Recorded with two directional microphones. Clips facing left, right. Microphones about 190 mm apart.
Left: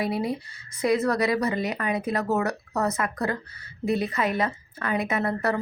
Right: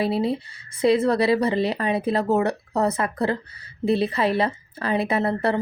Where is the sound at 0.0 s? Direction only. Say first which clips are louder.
Right 4 dB; 30° right (ahead or behind).